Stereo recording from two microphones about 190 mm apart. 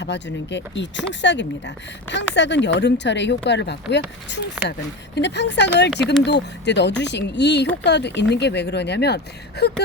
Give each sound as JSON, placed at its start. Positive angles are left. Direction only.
{"t": 0.0, "sound": "a woman's voice", "side_deg": 65}